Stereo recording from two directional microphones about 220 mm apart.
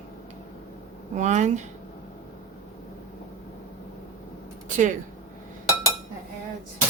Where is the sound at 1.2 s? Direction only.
30° right (ahead or behind).